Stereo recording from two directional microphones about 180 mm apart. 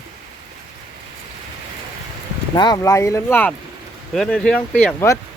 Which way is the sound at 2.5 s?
25° left (ahead or behind).